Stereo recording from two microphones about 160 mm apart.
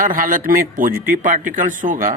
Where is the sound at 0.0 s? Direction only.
60° right (ahead or behind).